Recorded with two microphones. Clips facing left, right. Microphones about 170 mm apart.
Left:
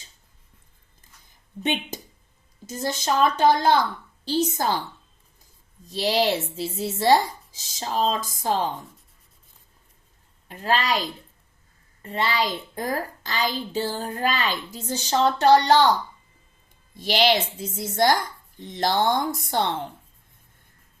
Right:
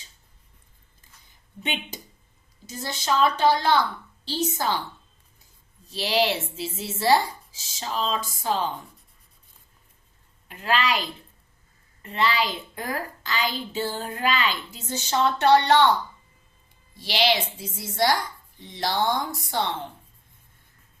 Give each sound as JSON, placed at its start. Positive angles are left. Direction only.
{"t": 1.6, "sound": "a woman's voice", "side_deg": 45}
{"t": 5.8, "sound": "a woman's voice", "side_deg": 40}
{"t": 10.5, "sound": "a woman's voice", "side_deg": 40}
{"t": 12.0, "sound": "a woman's voice", "side_deg": 35}
{"t": 17.0, "sound": "a woman's voice", "side_deg": 50}